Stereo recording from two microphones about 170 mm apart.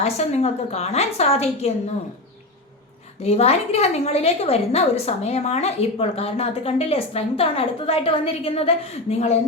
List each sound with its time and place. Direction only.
0.0 s a woman's voice: 40° left (ahead or behind)
3.2 s a woman's voice: 35° left (ahead or behind)